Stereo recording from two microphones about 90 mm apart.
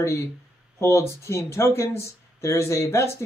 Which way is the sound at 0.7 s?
30° left (ahead or behind).